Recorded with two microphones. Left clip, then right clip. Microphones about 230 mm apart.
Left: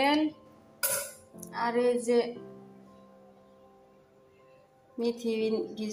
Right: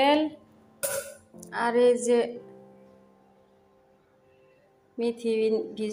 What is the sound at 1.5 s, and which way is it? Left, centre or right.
Speech, right.